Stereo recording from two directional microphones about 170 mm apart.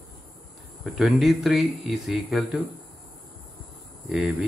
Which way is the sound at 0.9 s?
Centre (ahead or behind).